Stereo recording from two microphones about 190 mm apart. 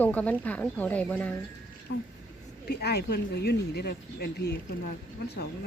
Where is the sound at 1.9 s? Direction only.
60° left (ahead or behind).